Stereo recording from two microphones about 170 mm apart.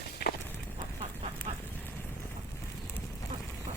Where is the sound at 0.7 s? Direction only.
40° right (ahead or behind).